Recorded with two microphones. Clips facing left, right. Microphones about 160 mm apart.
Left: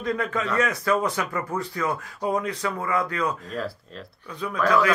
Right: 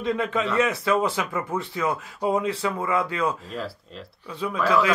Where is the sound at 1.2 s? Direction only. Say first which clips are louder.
Even; 15° right (ahead or behind).